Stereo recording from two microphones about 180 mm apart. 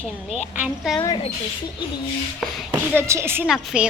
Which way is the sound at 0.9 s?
25° left (ahead or behind).